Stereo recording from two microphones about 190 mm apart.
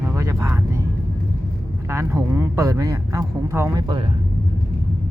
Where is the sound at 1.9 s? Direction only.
15° right (ahead or behind).